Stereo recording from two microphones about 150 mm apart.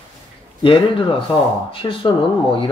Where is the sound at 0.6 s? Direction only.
35° left (ahead or behind).